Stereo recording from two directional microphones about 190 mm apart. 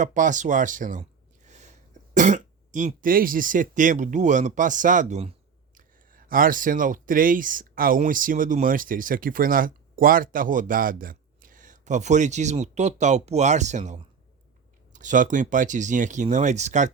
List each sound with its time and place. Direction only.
0.0 s speech: 40° right (ahead or behind)
1.5 s a sound: 40° right (ahead or behind)
2.1 s speech: 40° right (ahead or behind)
5.7 s speech: 50° right (ahead or behind)